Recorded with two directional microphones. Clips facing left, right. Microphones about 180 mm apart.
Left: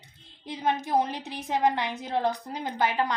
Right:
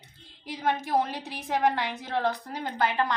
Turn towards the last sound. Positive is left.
turn(degrees=20)  # may be behind; listen again after turning